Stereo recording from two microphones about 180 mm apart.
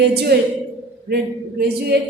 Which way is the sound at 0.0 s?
65° right (ahead or behind).